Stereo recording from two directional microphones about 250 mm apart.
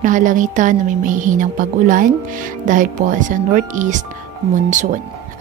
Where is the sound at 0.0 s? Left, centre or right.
Right.